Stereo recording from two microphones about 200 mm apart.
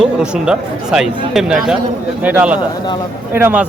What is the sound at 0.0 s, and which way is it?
Speech, 5° right (ahead or behind).